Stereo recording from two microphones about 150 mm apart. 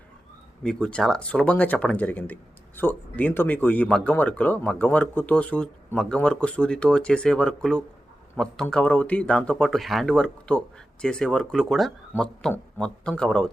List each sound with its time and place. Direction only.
0.6 s speech: 5° left (ahead or behind)